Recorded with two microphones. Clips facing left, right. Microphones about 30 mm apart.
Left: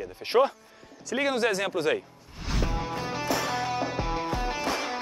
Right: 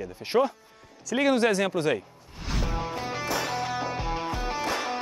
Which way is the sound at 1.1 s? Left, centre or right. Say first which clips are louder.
Right 3 dB; centre.